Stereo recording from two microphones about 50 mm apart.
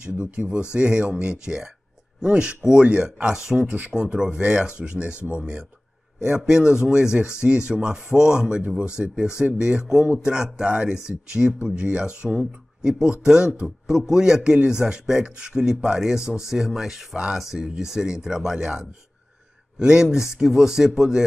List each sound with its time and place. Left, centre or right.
0.0 s speech: centre
19.8 s speech: centre